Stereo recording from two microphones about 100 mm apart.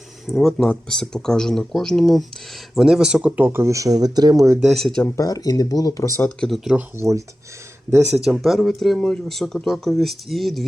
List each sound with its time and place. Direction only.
0.3 s speech: centre (ahead or behind); by 4.4 s 40° right (ahead or behind)
4.6 s speech: centre (ahead or behind)
5.0 s speech: 35° left (ahead or behind)
6.2 s speech: 5° left (ahead or behind)
6.9 s speech: 30° right (ahead or behind)
8.1 s speech: 5° right (ahead or behind)